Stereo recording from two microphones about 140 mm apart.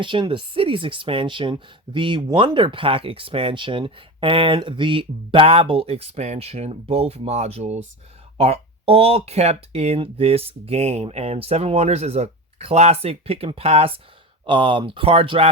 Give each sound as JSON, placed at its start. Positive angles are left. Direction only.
{"t": 0.0, "sound": "speech", "side_deg": -35}